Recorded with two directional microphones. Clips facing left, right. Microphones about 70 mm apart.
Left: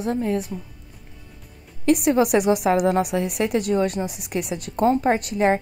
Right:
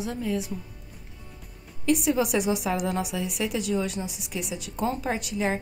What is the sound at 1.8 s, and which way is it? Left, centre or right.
A woman's voice, left.